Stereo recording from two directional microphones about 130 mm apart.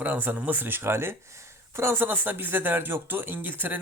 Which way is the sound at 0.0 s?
15° right (ahead or behind).